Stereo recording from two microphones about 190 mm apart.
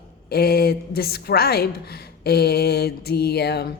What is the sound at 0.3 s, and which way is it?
A woman's voice, 55° left (ahead or behind).